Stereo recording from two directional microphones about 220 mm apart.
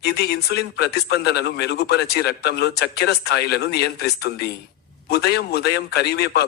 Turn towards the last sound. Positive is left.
turn(degrees=45)  # may be behind; listen again after turning